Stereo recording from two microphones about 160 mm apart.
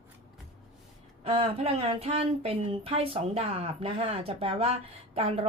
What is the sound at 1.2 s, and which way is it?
Speech, 35° right (ahead or behind).